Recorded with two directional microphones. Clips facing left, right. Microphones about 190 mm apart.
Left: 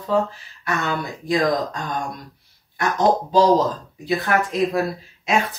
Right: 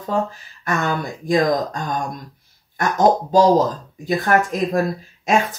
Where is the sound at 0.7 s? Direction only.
45° right (ahead or behind).